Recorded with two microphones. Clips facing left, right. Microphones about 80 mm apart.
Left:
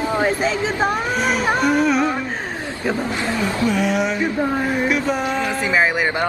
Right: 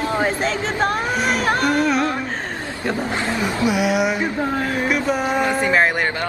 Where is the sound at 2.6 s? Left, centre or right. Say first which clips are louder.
Left 1 dB; left.